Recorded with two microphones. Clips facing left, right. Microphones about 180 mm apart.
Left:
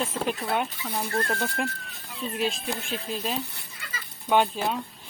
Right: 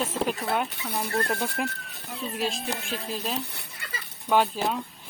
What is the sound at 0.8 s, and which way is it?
Speech, 10° right (ahead or behind).